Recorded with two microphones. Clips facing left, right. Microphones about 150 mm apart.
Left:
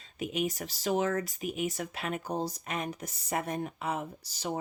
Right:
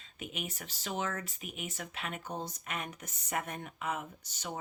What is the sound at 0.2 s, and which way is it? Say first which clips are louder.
Speech: left 10 dB; 40° left (ahead or behind).